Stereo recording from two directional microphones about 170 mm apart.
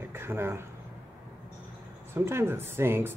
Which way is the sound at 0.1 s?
15° right (ahead or behind).